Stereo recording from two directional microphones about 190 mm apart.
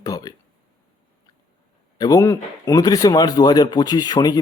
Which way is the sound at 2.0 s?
15° left (ahead or behind).